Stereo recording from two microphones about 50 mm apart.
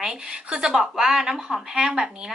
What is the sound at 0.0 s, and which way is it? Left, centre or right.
Speech, centre.